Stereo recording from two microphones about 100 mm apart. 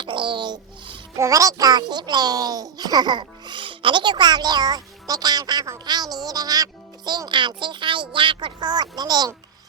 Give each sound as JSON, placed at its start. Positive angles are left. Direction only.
{"t": 0.0, "sound": "babbling", "side_deg": -50}
{"t": 1.1, "sound": "a child's voice", "side_deg": -35}